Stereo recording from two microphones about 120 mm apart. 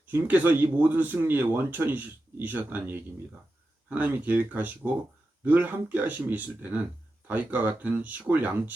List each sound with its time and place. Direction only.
0.1 s speech: 15° right (ahead or behind)